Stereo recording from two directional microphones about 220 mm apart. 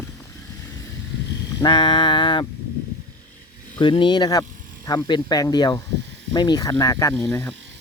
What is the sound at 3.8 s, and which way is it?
Speech, 20° left (ahead or behind).